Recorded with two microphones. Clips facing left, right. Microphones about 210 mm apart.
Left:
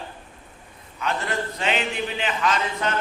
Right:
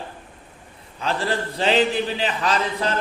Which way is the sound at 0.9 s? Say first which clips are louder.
Right 3 dB; 30° right (ahead or behind).